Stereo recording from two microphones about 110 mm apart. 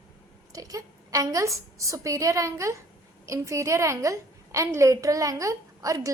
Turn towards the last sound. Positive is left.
turn(degrees=-30)  # may be behind; listen again after turning